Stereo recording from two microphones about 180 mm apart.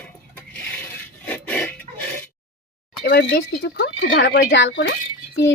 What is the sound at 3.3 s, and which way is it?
Speech, 65° left (ahead or behind).